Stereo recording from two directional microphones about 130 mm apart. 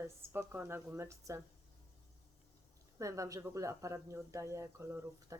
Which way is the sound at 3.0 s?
25° right (ahead or behind).